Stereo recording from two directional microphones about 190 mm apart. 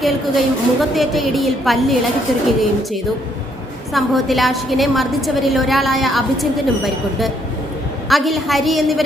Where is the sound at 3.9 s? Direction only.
Centre (ahead or behind).